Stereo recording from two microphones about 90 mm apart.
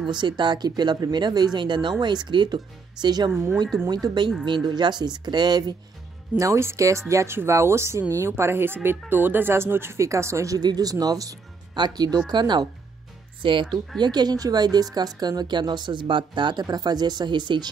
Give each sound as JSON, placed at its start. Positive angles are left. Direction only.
{"t": 0.1, "sound": "speech", "side_deg": -55}
{"t": 3.3, "sound": "a woman's voice", "side_deg": -25}
{"t": 3.9, "sound": "speech", "side_deg": -55}
{"t": 6.3, "sound": "a woman's voice", "side_deg": -35}
{"t": 13.4, "sound": "speech", "side_deg": -70}
{"t": 13.9, "sound": "speech", "side_deg": -50}
{"t": 16.6, "sound": "speech", "side_deg": -50}